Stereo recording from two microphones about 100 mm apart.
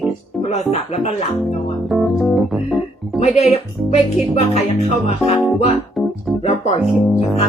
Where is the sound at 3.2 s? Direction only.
90° left.